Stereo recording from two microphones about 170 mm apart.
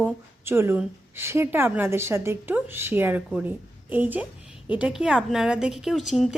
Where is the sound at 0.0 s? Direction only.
15° right (ahead or behind).